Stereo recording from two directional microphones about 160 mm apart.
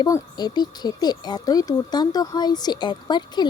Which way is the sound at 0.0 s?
25° left (ahead or behind).